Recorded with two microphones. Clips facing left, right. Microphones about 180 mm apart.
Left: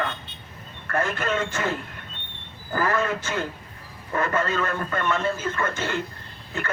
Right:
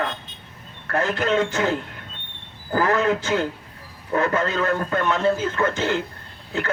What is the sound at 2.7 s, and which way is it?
A man's voice, 70° right (ahead or behind).